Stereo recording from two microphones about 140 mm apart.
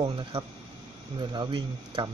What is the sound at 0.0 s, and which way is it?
Speech, 35° right (ahead or behind).